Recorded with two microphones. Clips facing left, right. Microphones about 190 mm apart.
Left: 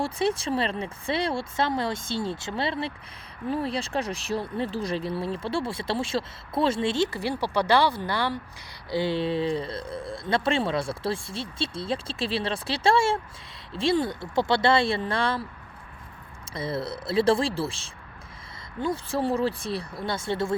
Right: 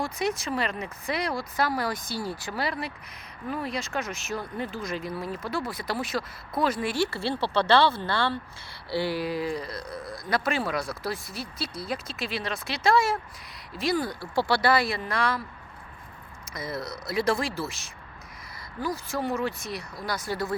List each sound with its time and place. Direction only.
0.0 s speech: 30° left (ahead or behind)
16.5 s speech: 30° left (ahead or behind)